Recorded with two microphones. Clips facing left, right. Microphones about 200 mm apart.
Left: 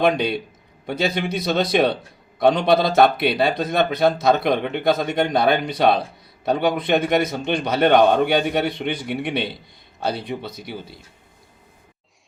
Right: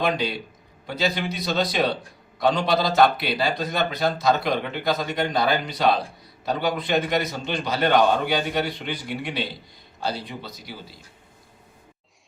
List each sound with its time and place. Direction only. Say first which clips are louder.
0.0 s speech: left 5 dB; 60° left (ahead or behind)